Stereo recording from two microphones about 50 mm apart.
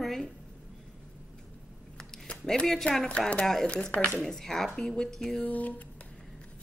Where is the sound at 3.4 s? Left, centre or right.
Centre.